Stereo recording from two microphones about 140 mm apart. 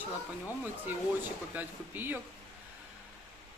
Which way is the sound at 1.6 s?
15° right (ahead or behind).